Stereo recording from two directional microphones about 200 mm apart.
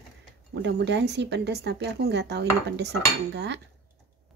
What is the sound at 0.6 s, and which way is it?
Speech, 55° right (ahead or behind).